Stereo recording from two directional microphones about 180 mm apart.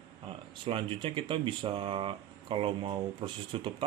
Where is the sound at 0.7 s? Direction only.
30° right (ahead or behind).